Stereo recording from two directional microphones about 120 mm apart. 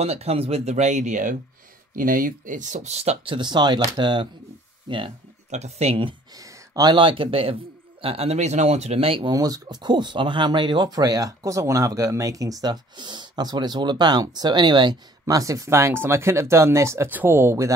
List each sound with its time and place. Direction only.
0.0 s speech: 60° right (ahead or behind); by 1.3 s 90° right
2.4 s speech: 90° right; by 3.3 s 60° right (ahead or behind)
3.3 s speech: 40° right (ahead or behind)
5.5 s speech: 65° right (ahead or behind)
6.3 s speech: 30° right (ahead or behind); by 9.3 s 50° right (ahead or behind)
9.3 s speech: 30° right (ahead or behind)